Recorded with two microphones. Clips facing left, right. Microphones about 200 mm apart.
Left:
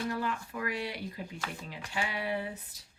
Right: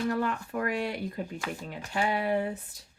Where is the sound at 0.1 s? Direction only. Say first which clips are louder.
Right 5 dB; 50° right (ahead or behind).